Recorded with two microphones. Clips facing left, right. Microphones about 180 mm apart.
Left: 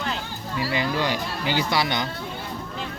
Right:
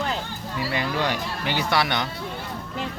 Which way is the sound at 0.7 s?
55° right (ahead or behind).